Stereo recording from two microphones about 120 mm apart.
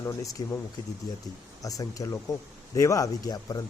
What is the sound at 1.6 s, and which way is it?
Speech, 30° left (ahead or behind).